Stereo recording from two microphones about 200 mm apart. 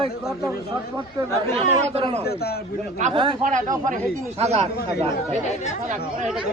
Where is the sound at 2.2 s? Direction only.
50° left (ahead or behind).